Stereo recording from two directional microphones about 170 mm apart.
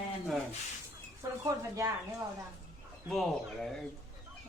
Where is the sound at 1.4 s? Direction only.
20° right (ahead or behind).